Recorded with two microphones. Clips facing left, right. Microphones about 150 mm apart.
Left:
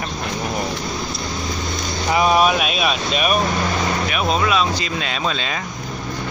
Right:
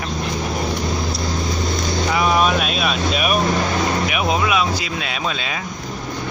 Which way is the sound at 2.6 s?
5° left (ahead or behind).